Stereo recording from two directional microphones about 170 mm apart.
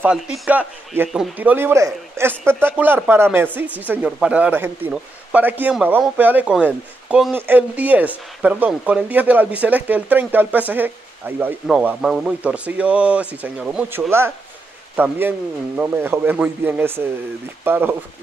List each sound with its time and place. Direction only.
0.0 s speech: 5° right (ahead or behind)